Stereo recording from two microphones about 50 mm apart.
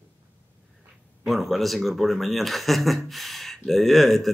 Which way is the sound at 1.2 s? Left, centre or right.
Centre.